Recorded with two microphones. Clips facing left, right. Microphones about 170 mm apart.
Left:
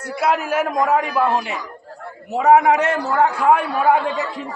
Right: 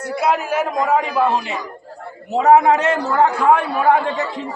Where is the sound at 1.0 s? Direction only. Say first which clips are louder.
Right 1 dB; 20° right (ahead or behind).